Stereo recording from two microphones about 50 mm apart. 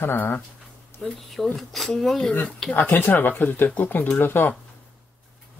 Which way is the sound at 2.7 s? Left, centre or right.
Left.